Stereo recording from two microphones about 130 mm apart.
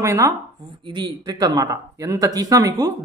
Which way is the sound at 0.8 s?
35° right (ahead or behind).